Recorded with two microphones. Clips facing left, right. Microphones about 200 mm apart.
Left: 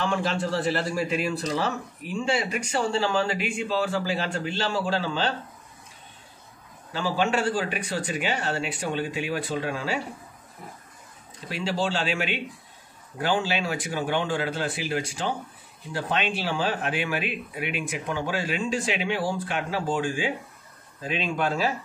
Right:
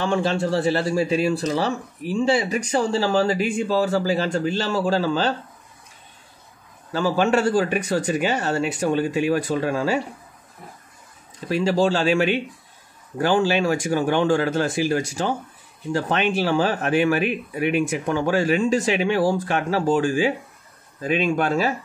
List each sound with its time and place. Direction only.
0.0 s a man's voice: 30° right (ahead or behind)
6.9 s speech: 45° right (ahead or behind)
11.4 s speech: 45° right (ahead or behind)
13.4 s speech: 45° right (ahead or behind)
21.1 s speech: 50° right (ahead or behind)